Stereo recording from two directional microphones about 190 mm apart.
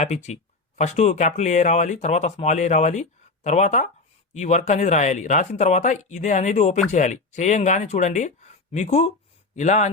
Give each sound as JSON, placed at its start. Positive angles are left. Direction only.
{"t": 0.0, "sound": "speech", "side_deg": 35}